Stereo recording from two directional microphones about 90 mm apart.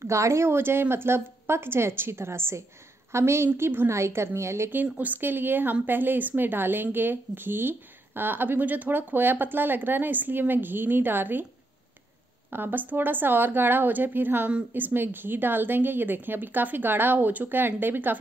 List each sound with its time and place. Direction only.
0.0 s speech: 30° right (ahead or behind)
12.4 s speech: 20° right (ahead or behind)